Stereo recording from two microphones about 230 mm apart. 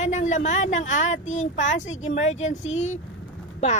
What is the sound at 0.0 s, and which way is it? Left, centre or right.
Speech, left.